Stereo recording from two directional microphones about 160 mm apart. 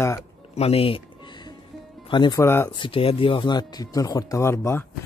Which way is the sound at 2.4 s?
15° left (ahead or behind).